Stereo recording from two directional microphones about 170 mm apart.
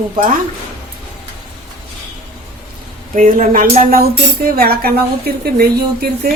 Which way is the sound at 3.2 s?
50° right (ahead or behind).